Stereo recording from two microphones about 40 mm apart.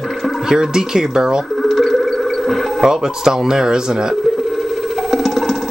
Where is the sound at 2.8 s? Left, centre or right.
Centre.